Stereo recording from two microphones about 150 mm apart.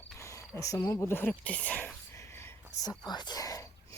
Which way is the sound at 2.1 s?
20° left (ahead or behind).